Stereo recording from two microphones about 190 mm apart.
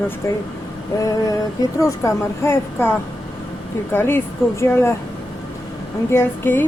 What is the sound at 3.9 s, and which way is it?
A woman's voice, 10° left (ahead or behind).